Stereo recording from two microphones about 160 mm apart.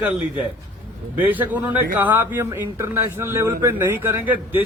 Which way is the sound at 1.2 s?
10° right (ahead or behind).